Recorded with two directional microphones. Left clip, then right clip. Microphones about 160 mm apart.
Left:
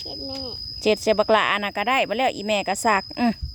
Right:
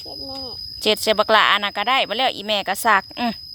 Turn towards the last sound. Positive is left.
turn(degrees=20)  # may be behind; listen again after turning